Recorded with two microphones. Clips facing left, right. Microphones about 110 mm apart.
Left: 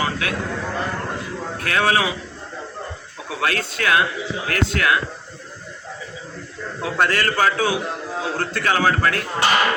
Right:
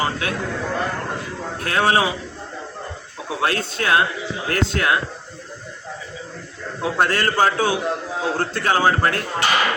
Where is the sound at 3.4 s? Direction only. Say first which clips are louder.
Even; 30° right (ahead or behind).